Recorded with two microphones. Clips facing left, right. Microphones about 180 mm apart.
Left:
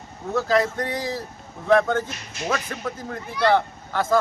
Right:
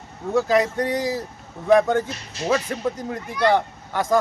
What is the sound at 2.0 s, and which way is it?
Speech, 30° right (ahead or behind).